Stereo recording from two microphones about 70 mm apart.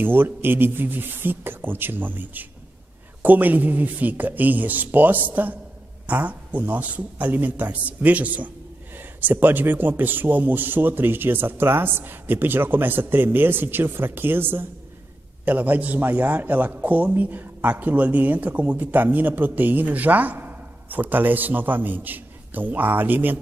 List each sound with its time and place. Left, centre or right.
0.0 s a man's voice: right